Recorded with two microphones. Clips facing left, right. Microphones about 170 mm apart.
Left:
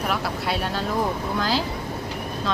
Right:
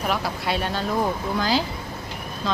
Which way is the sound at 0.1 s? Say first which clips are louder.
Right 1 dB; centre (ahead or behind).